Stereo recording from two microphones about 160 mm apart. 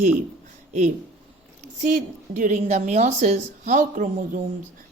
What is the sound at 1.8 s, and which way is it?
Speech, 50° right (ahead or behind).